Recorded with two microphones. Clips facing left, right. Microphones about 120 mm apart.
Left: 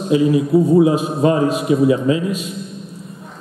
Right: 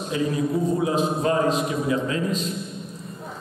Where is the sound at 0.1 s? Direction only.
10° left (ahead or behind).